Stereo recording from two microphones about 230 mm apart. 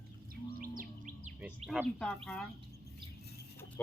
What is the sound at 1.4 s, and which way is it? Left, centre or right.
Speech, centre.